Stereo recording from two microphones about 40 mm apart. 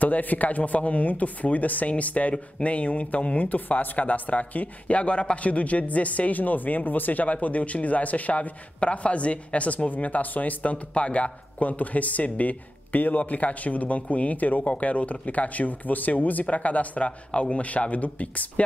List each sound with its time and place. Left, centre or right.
0.0 s speech: left